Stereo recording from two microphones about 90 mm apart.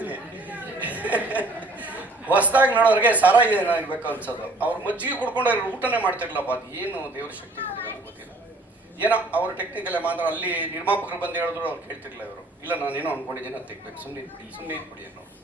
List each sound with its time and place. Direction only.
0.0 s chatter: 15° right (ahead or behind)
2.7 s a man's voice: 15° right (ahead or behind)
9.0 s a man's voice: 15° right (ahead or behind)